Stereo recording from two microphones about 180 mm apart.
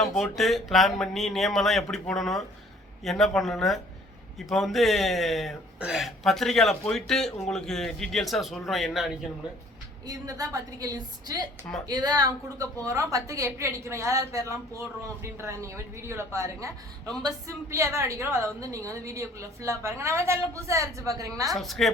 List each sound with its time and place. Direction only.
0.0 s speech: centre (ahead or behind)
10.1 s a woman's voice: 20° right (ahead or behind)
21.5 s speech: centre (ahead or behind)